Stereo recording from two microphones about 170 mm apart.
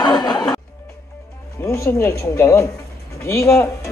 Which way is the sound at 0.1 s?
25° left (ahead or behind).